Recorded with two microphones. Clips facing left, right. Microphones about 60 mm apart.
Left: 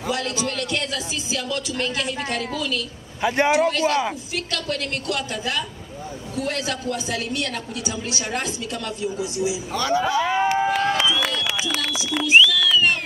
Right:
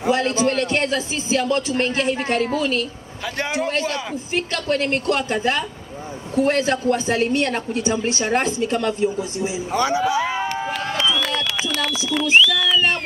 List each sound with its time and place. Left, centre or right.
0.0 s a woman's voice: right
3.2 s a man's voice: left
4.5 s a woman's voice: right
9.7 s a man's voice: centre
10.4 s run: centre
11.1 s a sound: centre